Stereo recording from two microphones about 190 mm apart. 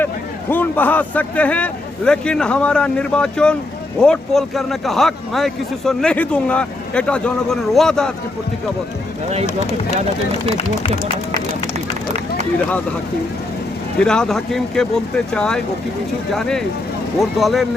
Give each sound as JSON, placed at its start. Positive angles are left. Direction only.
{"t": 0.5, "sound": "a man's voice", "side_deg": 10}
{"t": 14.0, "sound": "a man's voice", "side_deg": 5}